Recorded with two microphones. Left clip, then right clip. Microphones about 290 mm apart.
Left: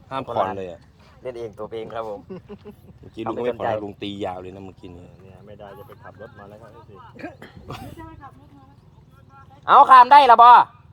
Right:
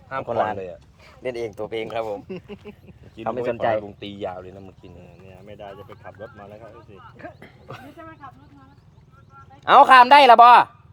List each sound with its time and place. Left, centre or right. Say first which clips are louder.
0.3 s speech: even; right
0.5 s speech: even; left
1.2 s speech: right 3 dB; right
3.8 s speech: left 2 dB; left
5.5 s a sound: right 3 dB; right
6.1 s speech: right 2 dB; right
7.2 s speech: left 3 dB; left
9.6 s speech: left 1 dB; right